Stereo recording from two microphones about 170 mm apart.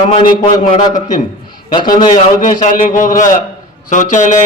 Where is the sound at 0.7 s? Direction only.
25° left (ahead or behind).